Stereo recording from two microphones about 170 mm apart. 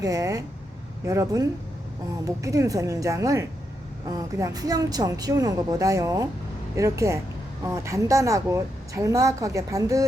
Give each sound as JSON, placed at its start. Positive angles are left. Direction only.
{"t": 0.0, "sound": "a woman's voice", "side_deg": -20}